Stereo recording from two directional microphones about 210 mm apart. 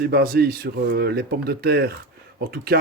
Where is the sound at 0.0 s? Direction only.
45° right (ahead or behind).